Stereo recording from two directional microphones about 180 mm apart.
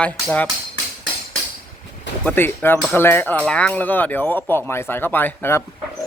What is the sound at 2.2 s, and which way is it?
Speech, 10° left (ahead or behind).